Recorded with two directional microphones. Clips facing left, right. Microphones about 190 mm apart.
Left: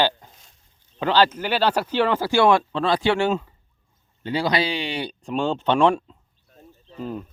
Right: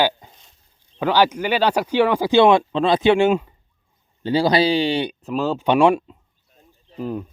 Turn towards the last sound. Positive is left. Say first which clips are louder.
# right 4 dB
turn(degrees=-15)  # may be behind; listen again after turning